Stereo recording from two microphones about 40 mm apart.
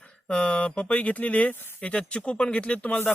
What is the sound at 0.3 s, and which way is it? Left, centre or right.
Speech, left.